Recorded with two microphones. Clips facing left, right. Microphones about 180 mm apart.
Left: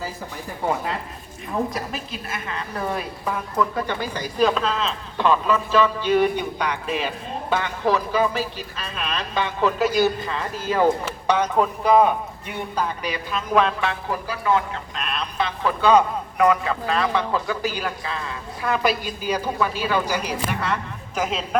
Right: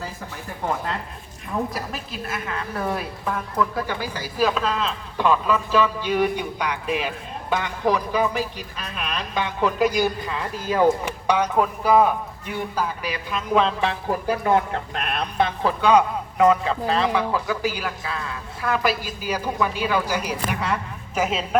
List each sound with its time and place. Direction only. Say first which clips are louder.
1.7 s speech: left 1 dB; centre (ahead or behind)
13.5 s a man's voice: even; 25° right (ahead or behind)
14.1 s speech: right 3 dB; 50° right (ahead or behind)
15.8 s speech: left 1 dB; 10° right (ahead or behind)
16.4 s a man's voice: right 1 dB; 25° right (ahead or behind)
17.1 s speech: even; 10° right (ahead or behind)